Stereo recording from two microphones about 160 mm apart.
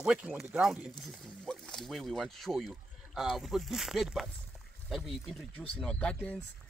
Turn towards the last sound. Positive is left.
turn(degrees=10)  # may be behind; listen again after turning